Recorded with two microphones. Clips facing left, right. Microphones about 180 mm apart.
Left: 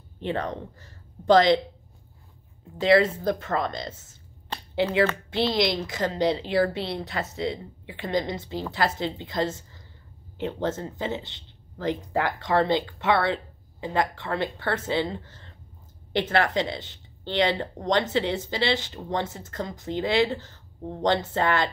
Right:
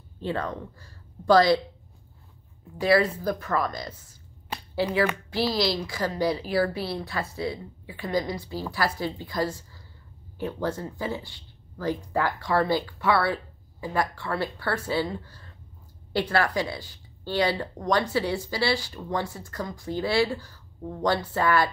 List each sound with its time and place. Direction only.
0.2 s speech: 20° left (ahead or behind)
2.8 s speech: 25° left (ahead or behind)
4.5 s a sound: 10° right (ahead or behind)
5.3 s a woman's voice: 20° left (ahead or behind)